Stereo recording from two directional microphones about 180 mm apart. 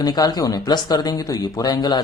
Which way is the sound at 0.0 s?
20° left (ahead or behind).